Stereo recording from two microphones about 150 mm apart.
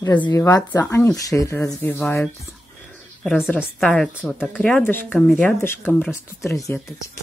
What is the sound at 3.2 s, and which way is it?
Speech, 5° left (ahead or behind).